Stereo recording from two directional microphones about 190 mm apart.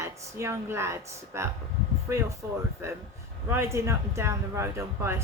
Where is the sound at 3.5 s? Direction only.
15° right (ahead or behind).